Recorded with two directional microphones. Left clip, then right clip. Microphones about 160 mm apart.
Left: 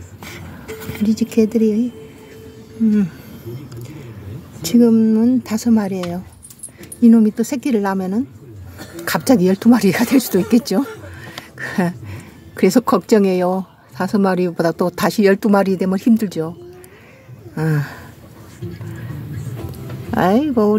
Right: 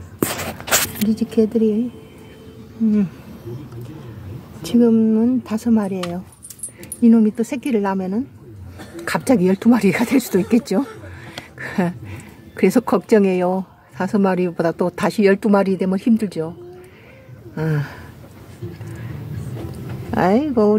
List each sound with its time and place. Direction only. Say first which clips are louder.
1.0 s speech: left 1 dB; 25° left (ahead or behind)
4.6 s a woman's voice: left 2 dB; 20° left (ahead or behind)
17.6 s a woman's voice: left 2 dB; 15° left (ahead or behind)
20.1 s a woman's voice: left 1 dB; 15° left (ahead or behind)